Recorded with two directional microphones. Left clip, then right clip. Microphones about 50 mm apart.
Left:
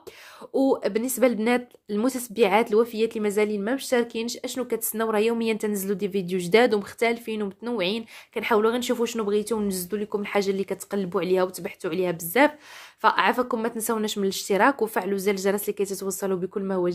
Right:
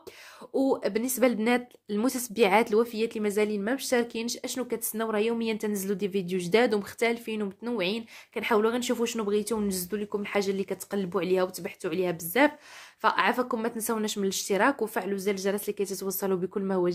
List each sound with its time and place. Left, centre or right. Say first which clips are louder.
0.5 s speech: left 4 dB; left
1.0 s a woman's voice: left 2 dB; centre
2.1 s a woman's voice: left 2 dB; centre
2.8 s a woman's voice: left 4 dB; left
4.6 s a woman's voice: left 4 dB; left
5.0 s a woman's voice: left 5 dB; left
5.7 s a woman's voice: left 3 dB; left
6.3 s speech: left 5 dB; left
6.8 s a woman's voice: left 3 dB; left; by 9.7 s centre
9.7 s a woman's voice: left 3 dB; left
14.5 s a woman's voice: left 5 dB; left
15.8 s speech: left 4 dB; left
16.2 s speech: left 1 dB; centre